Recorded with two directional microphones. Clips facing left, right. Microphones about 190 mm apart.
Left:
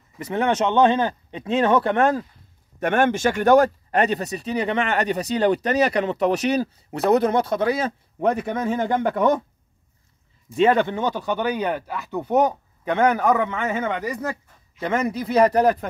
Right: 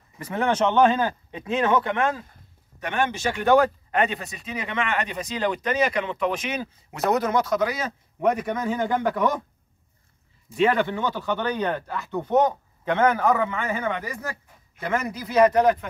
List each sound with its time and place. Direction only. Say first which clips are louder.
0.3 s speech: left 2 dB; 20° left (ahead or behind); by 2.2 s 40° left (ahead or behind)
2.8 s speech: left 6 dB; 50° left (ahead or behind); by 9.4 s 25° left (ahead or behind)
10.5 s speech: left 3 dB; 25° left (ahead or behind)